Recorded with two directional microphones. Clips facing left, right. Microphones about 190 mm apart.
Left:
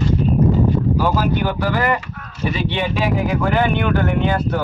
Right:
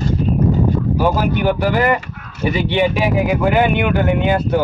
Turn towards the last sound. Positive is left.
turn(degrees=-15)  # may be behind; listen again after turning